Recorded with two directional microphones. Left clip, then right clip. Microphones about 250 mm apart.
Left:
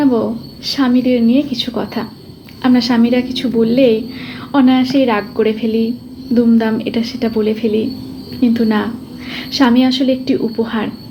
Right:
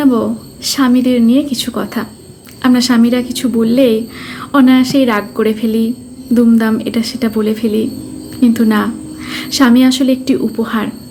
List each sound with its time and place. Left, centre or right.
0.0 s speech: centre